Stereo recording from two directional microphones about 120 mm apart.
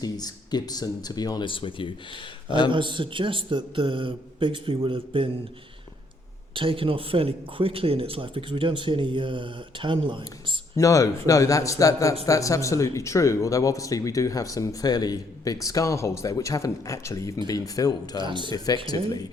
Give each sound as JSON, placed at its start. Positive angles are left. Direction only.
{"t": 0.0, "sound": "speech", "side_deg": 35}
{"t": 2.6, "sound": "speech", "side_deg": -45}
{"t": 6.5, "sound": "speech", "side_deg": -45}
{"t": 10.8, "sound": "speech", "side_deg": 30}
{"t": 18.2, "sound": "speech", "side_deg": -40}
{"t": 18.5, "sound": "speech", "side_deg": 35}